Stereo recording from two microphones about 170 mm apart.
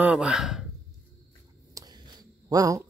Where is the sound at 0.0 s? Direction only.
5° right (ahead or behind).